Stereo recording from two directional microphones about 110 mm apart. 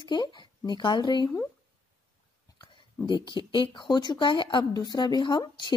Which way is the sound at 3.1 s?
40° left (ahead or behind).